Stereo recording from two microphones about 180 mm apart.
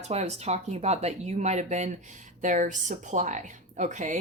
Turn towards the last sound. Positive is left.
turn(degrees=-45)  # may be behind; listen again after turning